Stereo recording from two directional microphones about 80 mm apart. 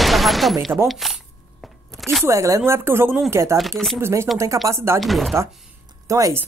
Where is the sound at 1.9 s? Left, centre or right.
Centre.